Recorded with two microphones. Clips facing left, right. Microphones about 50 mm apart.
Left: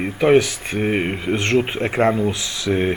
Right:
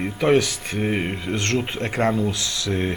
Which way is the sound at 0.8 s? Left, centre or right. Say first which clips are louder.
Left 4 dB; centre.